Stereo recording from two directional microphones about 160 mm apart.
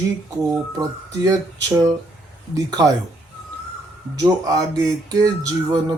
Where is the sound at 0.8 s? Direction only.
20° right (ahead or behind).